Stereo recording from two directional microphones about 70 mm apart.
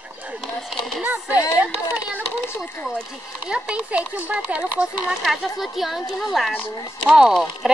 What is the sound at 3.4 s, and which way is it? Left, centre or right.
Speech, centre.